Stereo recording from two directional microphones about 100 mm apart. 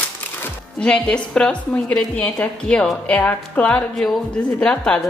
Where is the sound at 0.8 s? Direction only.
10° left (ahead or behind).